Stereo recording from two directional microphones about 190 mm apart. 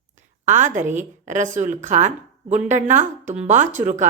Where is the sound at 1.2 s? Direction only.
40° right (ahead or behind).